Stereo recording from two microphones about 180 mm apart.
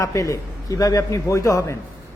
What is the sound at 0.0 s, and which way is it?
A man's voice, 15° left (ahead or behind).